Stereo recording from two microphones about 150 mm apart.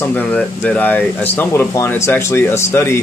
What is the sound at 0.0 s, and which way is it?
Speech, 10° left (ahead or behind).